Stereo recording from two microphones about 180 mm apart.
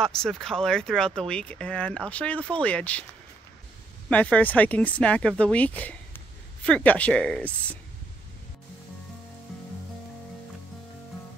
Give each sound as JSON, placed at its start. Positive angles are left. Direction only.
{"t": 0.0, "sound": "speech", "side_deg": 5}
{"t": 4.1, "sound": "speech", "side_deg": 10}